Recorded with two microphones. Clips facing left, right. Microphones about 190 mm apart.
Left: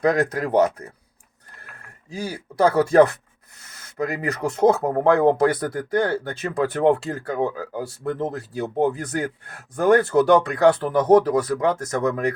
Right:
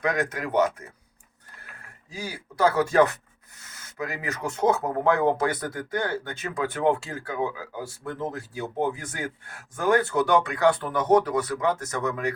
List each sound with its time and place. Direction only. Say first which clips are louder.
0.0 s speech: left 7 dB; 35° left (ahead or behind)
2.0 s speech: left 6 dB; 35° left (ahead or behind)